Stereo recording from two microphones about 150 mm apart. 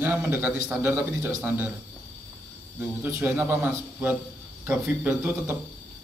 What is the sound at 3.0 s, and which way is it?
A man's voice, 15° right (ahead or behind).